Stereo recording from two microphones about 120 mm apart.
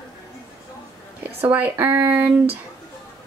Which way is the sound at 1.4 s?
15° right (ahead or behind).